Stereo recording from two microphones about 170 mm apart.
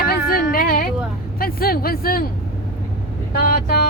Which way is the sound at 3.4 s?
60° left (ahead or behind).